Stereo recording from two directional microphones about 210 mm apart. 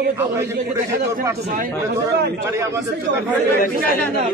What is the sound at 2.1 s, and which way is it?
Speech, 50° right (ahead or behind).